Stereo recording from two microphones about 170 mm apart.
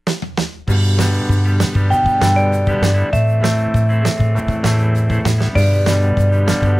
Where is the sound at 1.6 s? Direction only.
Centre (ahead or behind).